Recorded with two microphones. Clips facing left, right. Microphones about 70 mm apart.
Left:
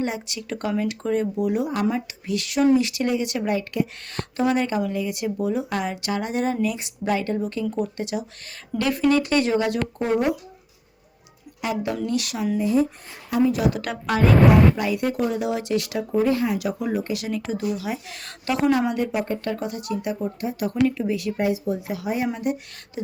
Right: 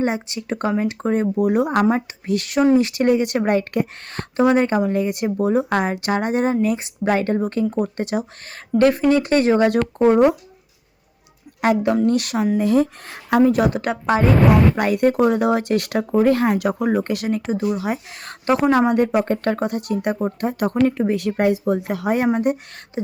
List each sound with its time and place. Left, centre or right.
0.0 s speech: right
2.0 s speech: right
11.6 s speech: right
11.9 s a woman's voice: right
12.5 s speech: right
13.5 s a woman's voice: right
13.8 s speech: right
14.8 s a woman's voice: right
17.4 s a woman's voice: right